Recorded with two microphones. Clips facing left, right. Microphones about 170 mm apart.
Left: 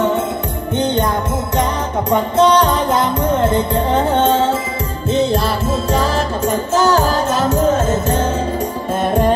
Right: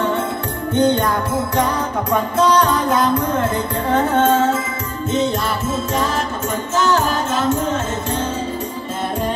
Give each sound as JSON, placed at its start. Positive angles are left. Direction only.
{"t": 2.0, "sound": "music", "side_deg": 25}